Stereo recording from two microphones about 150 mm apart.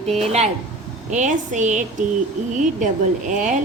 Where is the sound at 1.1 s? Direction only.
55° right (ahead or behind).